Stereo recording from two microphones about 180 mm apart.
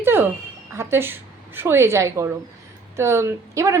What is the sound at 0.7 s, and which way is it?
A woman's voice, 15° right (ahead or behind).